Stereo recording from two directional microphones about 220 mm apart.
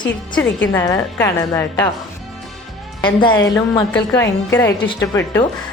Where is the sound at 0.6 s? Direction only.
10° left (ahead or behind).